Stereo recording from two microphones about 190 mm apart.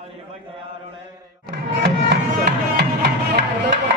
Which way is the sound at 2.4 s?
60° right (ahead or behind).